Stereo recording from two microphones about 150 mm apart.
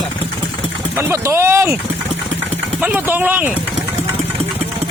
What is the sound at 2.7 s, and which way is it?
Speech, 10° right (ahead or behind).